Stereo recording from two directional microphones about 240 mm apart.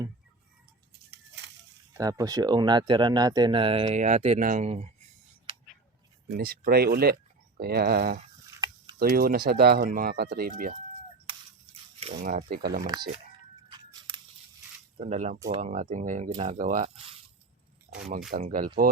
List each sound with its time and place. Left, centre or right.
1.9 s speech: centre
5.5 s a sound: right
6.3 s speech: right
11.3 s a sound: right
13.7 s biting: centre
14.9 s speech: right
18.3 s speech: right